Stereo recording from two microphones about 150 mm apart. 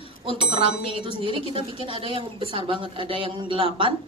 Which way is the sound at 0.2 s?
35° right (ahead or behind).